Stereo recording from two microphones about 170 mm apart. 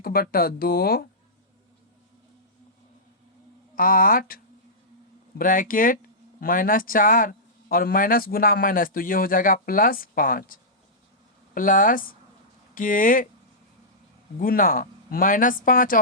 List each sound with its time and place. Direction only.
0.0 s speech: 60° left (ahead or behind)
3.8 s speech: 55° left (ahead or behind)
5.4 s speech: 55° left (ahead or behind)
14.3 s speech: 55° left (ahead or behind)